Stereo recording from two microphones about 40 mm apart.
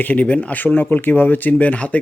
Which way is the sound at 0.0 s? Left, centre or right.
Left.